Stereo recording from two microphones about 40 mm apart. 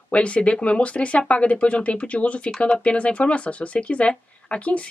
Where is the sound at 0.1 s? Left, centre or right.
Left.